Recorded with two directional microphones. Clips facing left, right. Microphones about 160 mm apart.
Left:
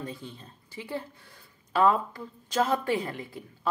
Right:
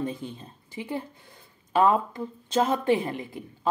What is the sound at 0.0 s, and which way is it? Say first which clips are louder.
Speech: right 7 dB; 20° right (ahead or behind).